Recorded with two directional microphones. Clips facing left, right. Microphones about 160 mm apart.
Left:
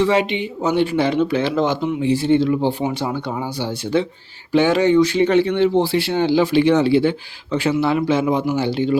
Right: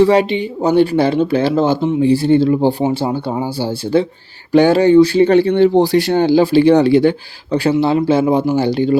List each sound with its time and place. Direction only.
0.0 s speech: 35° right (ahead or behind)